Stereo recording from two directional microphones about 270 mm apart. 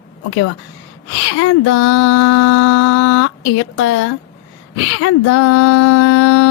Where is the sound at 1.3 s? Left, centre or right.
Left.